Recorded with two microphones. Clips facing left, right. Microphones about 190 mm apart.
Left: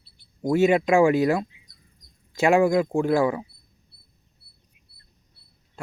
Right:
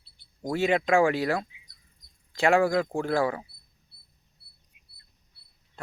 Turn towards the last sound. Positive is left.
turn(degrees=-20)  # may be behind; listen again after turning